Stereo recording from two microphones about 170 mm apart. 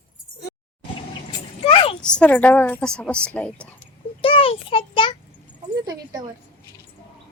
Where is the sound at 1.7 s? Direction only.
30° left (ahead or behind).